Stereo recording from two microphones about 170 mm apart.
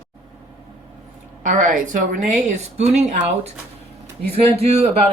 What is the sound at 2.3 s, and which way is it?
Speech, 45° right (ahead or behind).